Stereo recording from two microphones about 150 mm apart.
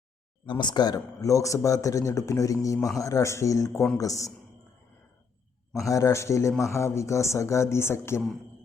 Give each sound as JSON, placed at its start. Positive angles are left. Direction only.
{"t": 0.4, "sound": "speech", "side_deg": 30}
{"t": 5.7, "sound": "speech", "side_deg": 20}